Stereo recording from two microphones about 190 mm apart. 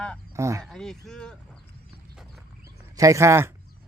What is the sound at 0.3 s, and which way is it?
Speech, 15° right (ahead or behind).